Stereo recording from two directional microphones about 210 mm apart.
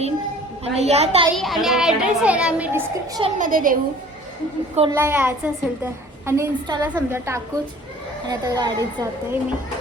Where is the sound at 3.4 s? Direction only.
40° right (ahead or behind).